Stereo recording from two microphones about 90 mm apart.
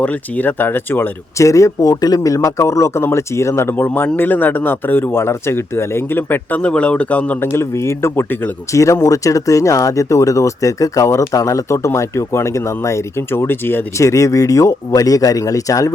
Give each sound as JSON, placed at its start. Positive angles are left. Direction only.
{"t": 0.0, "sound": "speech", "side_deg": 20}
{"t": 1.4, "sound": "speech", "side_deg": 35}
{"t": 6.6, "sound": "speech", "side_deg": 10}
{"t": 7.5, "sound": "speech", "side_deg": 30}
{"t": 8.7, "sound": "speech", "side_deg": 35}
{"t": 14.0, "sound": "speech", "side_deg": 35}